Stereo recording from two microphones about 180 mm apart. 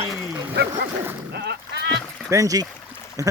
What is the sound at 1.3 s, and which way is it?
Boat, 65° right (ahead or behind).